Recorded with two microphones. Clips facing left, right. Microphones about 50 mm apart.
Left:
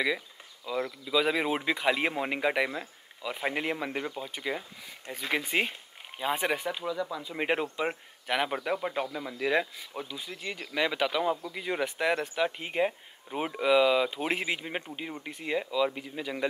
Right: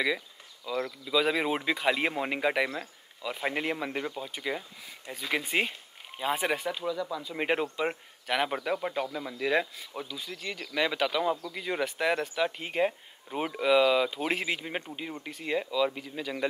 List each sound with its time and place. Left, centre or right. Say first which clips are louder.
0.7 s speech: even; centre
6.1 s speech: even; centre
10.0 s speech: even; centre
10.7 s speech: even; centre
15.1 s speech: even; centre
15.4 s speech: even; centre